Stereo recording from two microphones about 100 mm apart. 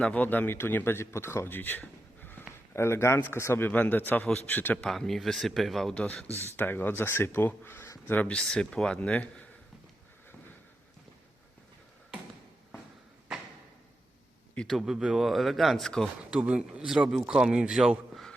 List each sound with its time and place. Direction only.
0.0 s speech: 15° left (ahead or behind)
4.8 s a man's voice: 5° left (ahead or behind)
14.5 s a man's voice: 10° left (ahead or behind)
14.8 s a man's voice: 5° right (ahead or behind)
16.3 s a man's voice: 10° right (ahead or behind)